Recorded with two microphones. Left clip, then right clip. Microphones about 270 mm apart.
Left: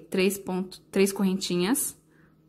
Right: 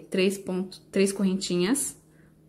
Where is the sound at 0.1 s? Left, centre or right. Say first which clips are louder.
Even; centre.